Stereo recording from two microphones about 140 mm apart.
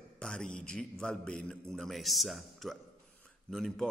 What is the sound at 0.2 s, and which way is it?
Speech, 5° left (ahead or behind).